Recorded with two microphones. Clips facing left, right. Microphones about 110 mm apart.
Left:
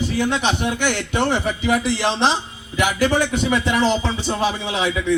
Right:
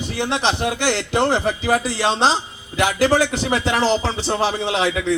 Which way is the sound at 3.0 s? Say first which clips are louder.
Right 2 dB; 90° right.